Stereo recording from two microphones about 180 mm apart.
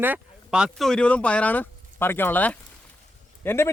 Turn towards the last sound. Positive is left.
turn(degrees=15)  # may be behind; listen again after turning